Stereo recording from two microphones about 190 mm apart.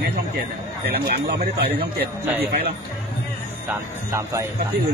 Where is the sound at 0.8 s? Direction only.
55° right (ahead or behind).